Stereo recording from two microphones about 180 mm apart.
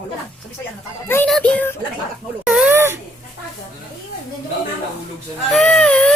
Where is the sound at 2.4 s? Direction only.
5° right (ahead or behind).